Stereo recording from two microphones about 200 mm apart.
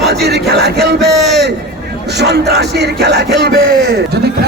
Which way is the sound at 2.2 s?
60° right (ahead or behind).